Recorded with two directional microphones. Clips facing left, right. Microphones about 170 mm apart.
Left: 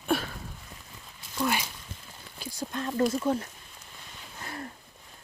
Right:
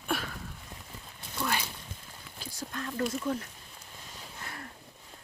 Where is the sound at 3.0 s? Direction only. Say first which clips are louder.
Left 5 dB; 40° left (ahead or behind).